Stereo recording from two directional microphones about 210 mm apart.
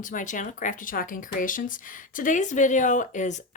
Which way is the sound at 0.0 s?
40° left (ahead or behind).